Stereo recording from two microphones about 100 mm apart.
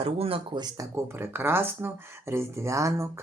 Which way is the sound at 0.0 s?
70° right (ahead or behind).